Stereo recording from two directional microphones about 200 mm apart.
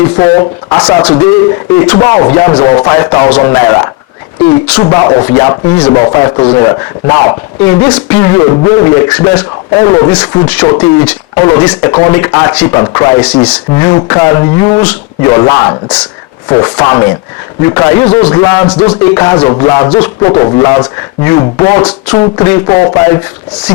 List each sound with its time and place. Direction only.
0.2 s speech: 15° left (ahead or behind)